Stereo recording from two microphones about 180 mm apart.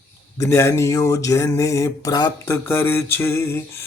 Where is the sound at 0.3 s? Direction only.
15° left (ahead or behind).